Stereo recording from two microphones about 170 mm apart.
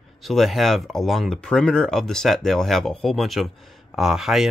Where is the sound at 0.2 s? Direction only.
Centre (ahead or behind).